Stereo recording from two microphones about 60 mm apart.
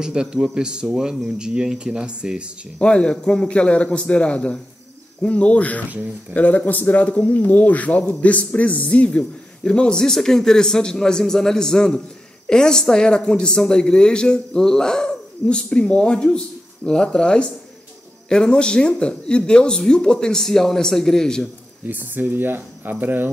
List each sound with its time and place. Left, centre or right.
0.0 s speech: centre
2.8 s a man's voice: centre
5.9 s speech: right
6.3 s a man's voice: left; by 21.5 s centre
21.8 s speech: right